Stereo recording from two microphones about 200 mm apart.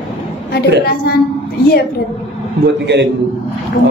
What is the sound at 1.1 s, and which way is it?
Speech, 50° left (ahead or behind).